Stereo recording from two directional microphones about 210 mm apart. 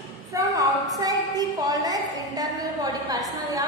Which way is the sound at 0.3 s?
15° right (ahead or behind).